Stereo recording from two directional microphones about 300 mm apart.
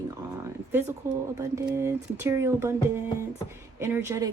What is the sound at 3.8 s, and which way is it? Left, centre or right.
Speech, centre.